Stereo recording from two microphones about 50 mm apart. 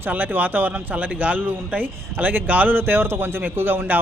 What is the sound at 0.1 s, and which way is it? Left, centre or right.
Speech, right.